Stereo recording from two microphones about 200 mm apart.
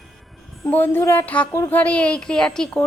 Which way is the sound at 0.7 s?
10° left (ahead or behind).